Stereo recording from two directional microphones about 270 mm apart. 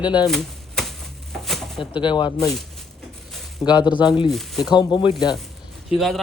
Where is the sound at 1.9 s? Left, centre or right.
Centre.